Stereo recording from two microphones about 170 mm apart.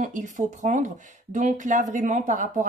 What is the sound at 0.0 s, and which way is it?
Speech, 45° right (ahead or behind).